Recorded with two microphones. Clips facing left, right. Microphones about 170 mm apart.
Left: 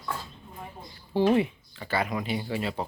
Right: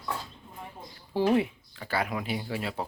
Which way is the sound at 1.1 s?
5° right (ahead or behind).